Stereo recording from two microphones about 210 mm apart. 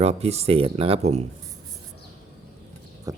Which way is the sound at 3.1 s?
15° right (ahead or behind).